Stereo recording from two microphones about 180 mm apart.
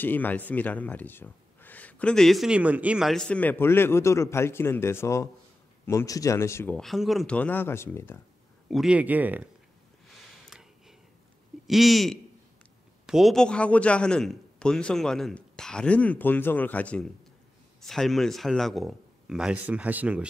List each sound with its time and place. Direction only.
0.0 s speech: 10° left (ahead or behind)
6.8 s speech: centre (ahead or behind)
8.6 s speech: centre (ahead or behind)
11.6 s a man's voice: centre (ahead or behind)